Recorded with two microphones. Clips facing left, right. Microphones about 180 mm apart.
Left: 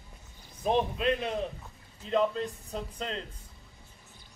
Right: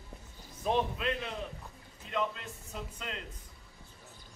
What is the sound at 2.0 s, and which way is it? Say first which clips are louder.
Speech: left 8 dB; 35° left (ahead or behind).